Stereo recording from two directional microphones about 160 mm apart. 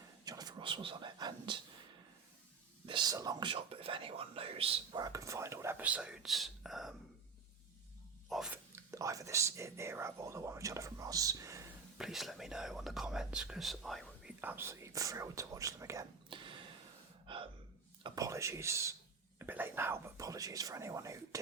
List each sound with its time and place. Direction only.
0.3 s a sound: 25° right (ahead or behind)
2.8 s speech: 30° right (ahead or behind)
4.9 s speech: 20° right (ahead or behind); by 6.9 s centre (ahead or behind)
8.3 s a sound: 5° right (ahead or behind)
8.7 s speech: 20° right (ahead or behind)
11.9 s speech: centre (ahead or behind)
14.4 s speech: 15° right (ahead or behind)
16.3 s a sound: 30° right (ahead or behind)
17.2 s gasp: 35° right (ahead or behind)
18.0 s speech: 25° right (ahead or behind)